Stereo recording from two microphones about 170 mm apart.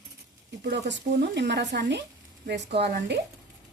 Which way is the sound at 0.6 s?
85° right.